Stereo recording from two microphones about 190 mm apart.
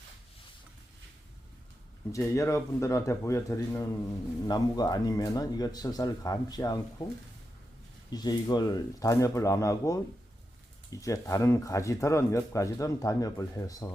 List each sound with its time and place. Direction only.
2.1 s speech: 15° left (ahead or behind)
8.1 s speech: 20° left (ahead or behind)